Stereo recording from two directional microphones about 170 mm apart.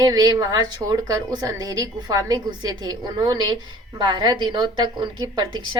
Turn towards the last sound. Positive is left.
turn(degrees=-25)  # may be behind; listen again after turning